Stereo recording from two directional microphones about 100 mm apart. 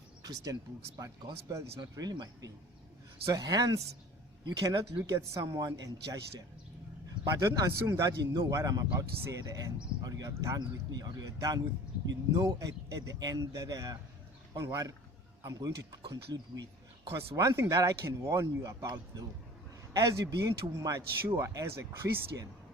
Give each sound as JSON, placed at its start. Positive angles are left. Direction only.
{"t": 0.2, "sound": "speech", "side_deg": -40}
{"t": 7.3, "sound": "speech", "side_deg": -35}
{"t": 16.0, "sound": "speech", "side_deg": -55}
{"t": 17.1, "sound": "speech", "side_deg": -30}